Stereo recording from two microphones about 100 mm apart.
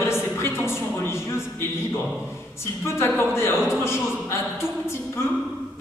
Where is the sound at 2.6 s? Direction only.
25° left (ahead or behind).